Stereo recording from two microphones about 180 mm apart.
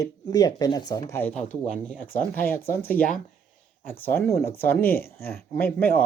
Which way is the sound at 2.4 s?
10° left (ahead or behind).